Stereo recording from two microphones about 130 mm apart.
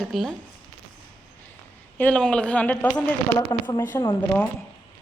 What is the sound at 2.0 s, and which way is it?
Speech, 10° left (ahead or behind).